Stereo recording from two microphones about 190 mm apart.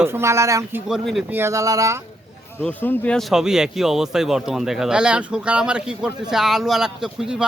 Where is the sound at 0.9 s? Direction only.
Centre (ahead or behind).